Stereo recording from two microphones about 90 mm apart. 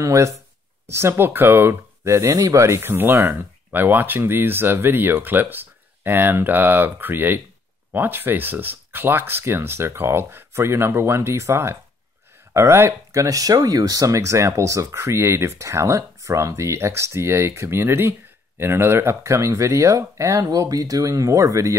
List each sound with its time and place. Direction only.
0.0 s speech: 35° right (ahead or behind)